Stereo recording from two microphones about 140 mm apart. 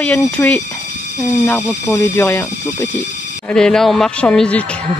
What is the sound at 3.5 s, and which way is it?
Speech, 5° left (ahead or behind).